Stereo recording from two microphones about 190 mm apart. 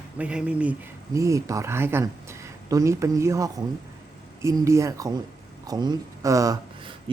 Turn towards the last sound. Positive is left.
turn(degrees=-20)  # may be behind; listen again after turning